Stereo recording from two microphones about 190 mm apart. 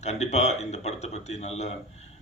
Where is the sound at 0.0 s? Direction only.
35° left (ahead or behind).